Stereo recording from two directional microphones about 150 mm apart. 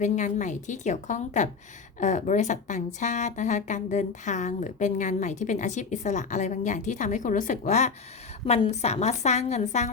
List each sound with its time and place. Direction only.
0.0 s a woman's voice: 55° left (ahead or behind)